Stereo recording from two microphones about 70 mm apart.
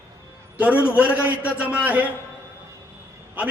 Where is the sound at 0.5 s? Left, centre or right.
Centre.